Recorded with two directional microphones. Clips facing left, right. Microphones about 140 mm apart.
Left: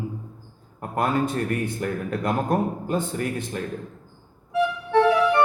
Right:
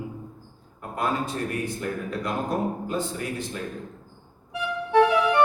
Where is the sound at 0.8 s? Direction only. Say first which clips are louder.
Left 4 dB; 55° left (ahead or behind).